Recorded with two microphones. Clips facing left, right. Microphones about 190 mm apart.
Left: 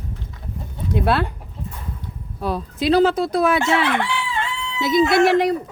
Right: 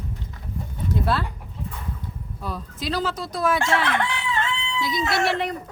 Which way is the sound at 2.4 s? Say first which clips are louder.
Left 10 dB; 65° left (ahead or behind).